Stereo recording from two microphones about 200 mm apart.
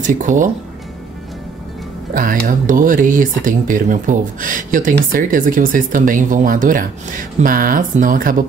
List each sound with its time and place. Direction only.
0.0 s speech: 40° right (ahead or behind)
2.1 s speech: 40° right (ahead or behind)